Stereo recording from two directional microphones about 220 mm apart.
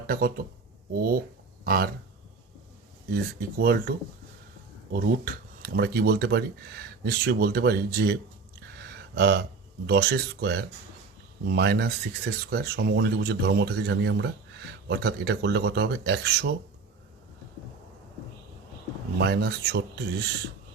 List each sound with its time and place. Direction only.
0.1 s speech: 40° right (ahead or behind)
3.1 s speech: 45° right (ahead or behind)
19.2 s speech: 50° right (ahead or behind)